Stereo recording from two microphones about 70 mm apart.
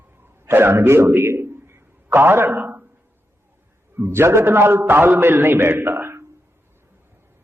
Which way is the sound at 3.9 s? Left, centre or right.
Right.